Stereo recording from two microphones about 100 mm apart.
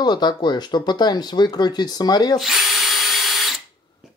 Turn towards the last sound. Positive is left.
turn(degrees=0)  # may be behind; listen again after turning